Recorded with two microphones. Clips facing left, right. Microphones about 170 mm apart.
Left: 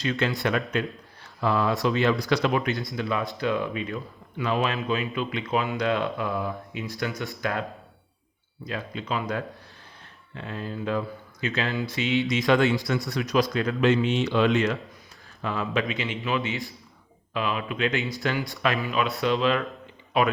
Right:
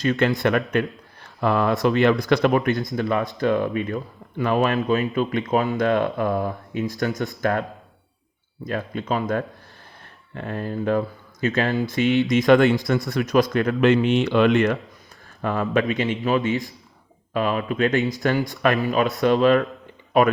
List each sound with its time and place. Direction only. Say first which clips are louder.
0.0 s speech: right 6 dB; 45° right (ahead or behind)
8.6 s speech: right 6 dB; 50° right (ahead or behind)